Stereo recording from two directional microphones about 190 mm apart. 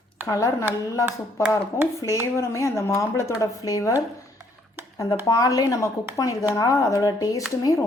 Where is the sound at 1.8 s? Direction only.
15° left (ahead or behind).